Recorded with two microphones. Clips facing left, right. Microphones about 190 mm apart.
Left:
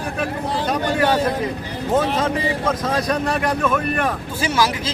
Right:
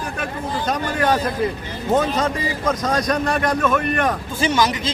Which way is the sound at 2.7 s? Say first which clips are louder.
Right 3 dB; 5° left (ahead or behind).